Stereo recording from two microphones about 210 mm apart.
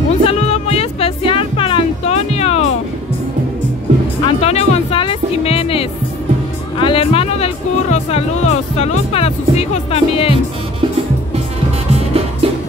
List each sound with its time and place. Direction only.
0.1 s music: 30° left (ahead or behind)
4.3 s music: 30° left (ahead or behind)
11.9 s music: 30° right (ahead or behind)